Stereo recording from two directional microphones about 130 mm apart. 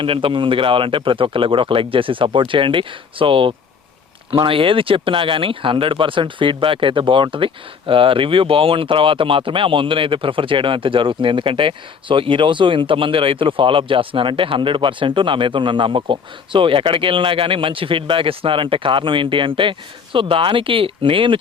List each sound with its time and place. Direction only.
0.0 s speech: 40° right (ahead or behind)